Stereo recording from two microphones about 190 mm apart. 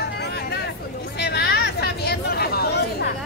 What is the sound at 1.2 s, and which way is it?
Chatter, 60° left (ahead or behind).